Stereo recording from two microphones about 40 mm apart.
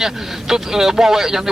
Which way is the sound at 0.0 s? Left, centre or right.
Centre.